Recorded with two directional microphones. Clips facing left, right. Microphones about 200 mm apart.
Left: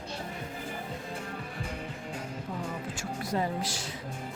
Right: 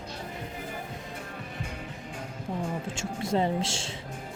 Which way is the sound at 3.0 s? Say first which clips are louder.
Right 4 dB; 25° right (ahead or behind).